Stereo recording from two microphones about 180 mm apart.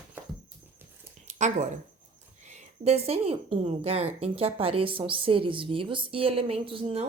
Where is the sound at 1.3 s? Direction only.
40° right (ahead or behind).